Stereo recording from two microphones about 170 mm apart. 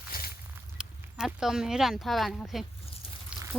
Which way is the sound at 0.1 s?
60° left (ahead or behind).